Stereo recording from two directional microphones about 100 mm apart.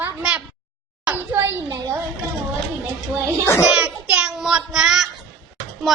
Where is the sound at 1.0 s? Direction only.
20° right (ahead or behind).